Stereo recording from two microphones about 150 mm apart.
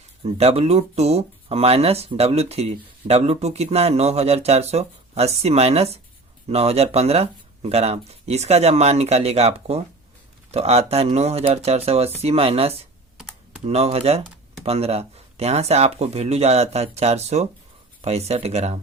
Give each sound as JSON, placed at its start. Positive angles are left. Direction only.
{"t": 0.2, "sound": "speech", "side_deg": -45}